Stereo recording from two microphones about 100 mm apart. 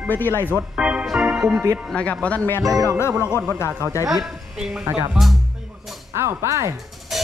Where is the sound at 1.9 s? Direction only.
10° left (ahead or behind); by 3.3 s 25° left (ahead or behind).